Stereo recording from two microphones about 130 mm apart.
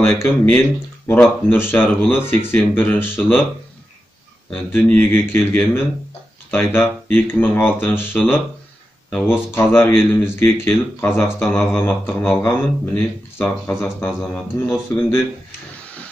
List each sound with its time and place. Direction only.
0.0 s speech: 20° left (ahead or behind)
4.7 s speech: 15° left (ahead or behind)